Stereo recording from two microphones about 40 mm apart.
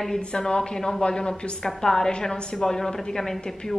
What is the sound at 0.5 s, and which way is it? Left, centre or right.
A woman's voice, centre.